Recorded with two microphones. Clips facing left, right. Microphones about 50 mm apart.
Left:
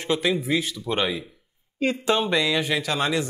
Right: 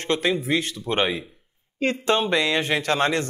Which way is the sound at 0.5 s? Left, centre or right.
Right.